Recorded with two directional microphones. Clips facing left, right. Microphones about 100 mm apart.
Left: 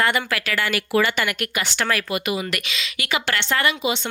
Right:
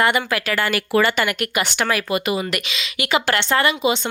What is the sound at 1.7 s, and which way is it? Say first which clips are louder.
Speech: even; 15° right (ahead or behind).